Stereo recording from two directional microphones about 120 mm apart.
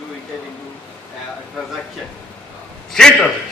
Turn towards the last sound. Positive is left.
turn(degrees=5)  # may be behind; listen again after turning